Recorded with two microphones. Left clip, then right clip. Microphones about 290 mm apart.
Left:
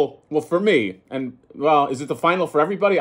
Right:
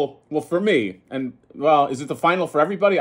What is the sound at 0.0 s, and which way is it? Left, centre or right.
Speech, centre.